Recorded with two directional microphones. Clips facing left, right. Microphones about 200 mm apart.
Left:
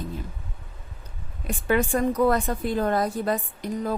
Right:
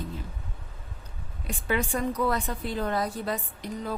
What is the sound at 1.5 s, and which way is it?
A woman's voice, 50° left (ahead or behind).